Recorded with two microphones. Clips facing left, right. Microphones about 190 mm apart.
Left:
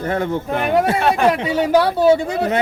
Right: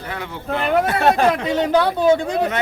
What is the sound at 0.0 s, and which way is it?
Speech, 45° left (ahead or behind).